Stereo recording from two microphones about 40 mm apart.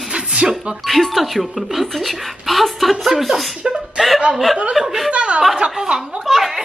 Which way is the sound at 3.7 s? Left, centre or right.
Centre.